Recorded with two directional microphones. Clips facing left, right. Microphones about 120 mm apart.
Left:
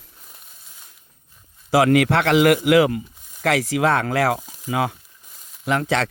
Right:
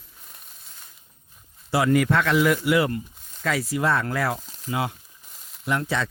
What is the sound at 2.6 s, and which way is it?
Speech, 90° left.